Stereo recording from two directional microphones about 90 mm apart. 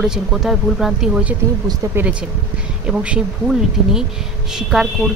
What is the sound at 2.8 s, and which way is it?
Speech, 10° right (ahead or behind).